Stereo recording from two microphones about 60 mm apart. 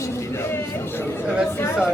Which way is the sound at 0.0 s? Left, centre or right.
Left.